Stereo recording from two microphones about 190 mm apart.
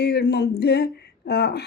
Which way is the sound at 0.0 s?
60° left (ahead or behind).